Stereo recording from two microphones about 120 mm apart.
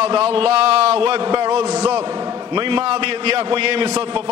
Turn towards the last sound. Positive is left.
turn(degrees=-50)  # may be behind; listen again after turning